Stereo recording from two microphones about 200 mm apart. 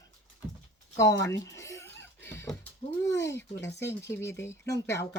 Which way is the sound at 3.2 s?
15° left (ahead or behind).